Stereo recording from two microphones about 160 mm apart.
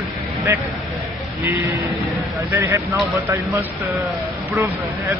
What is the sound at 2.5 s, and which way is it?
Speech, 15° right (ahead or behind).